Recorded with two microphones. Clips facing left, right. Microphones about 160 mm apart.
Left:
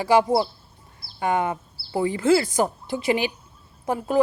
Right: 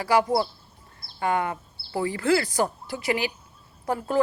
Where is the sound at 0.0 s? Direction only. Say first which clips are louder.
Left 3 dB; 20° left (ahead or behind).